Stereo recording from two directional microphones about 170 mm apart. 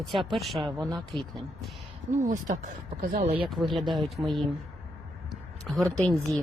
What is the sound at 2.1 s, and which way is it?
Speech, 45° right (ahead or behind).